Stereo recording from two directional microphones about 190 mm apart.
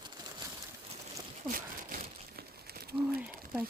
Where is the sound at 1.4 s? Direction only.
45° right (ahead or behind).